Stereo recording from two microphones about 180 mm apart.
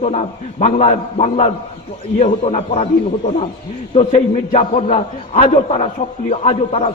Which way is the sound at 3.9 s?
35° left (ahead or behind).